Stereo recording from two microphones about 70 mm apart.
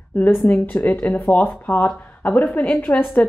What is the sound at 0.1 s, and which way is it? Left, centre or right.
Speech, left.